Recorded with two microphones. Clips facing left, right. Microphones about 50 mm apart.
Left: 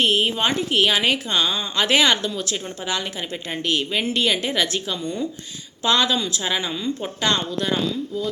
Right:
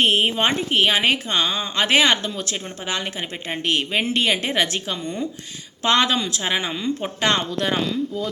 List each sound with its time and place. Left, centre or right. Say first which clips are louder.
0.0 s a woman's voice: right 1 dB; right
7.3 s speech: right 1 dB; right